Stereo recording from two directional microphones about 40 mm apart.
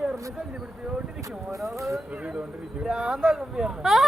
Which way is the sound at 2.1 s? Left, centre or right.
Right.